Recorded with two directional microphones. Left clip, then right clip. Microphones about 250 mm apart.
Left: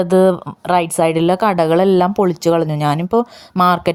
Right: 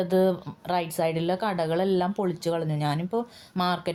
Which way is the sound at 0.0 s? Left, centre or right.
Left.